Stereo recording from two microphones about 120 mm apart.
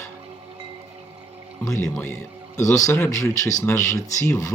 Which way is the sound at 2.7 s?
25° left (ahead or behind).